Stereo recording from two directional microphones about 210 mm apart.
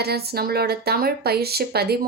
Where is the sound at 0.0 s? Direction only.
50° right (ahead or behind).